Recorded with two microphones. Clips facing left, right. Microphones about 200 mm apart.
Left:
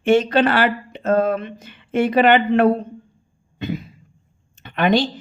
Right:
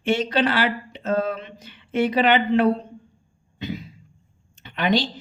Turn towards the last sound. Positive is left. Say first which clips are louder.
# left 4 dB
turn(degrees=50)  # may be behind; listen again after turning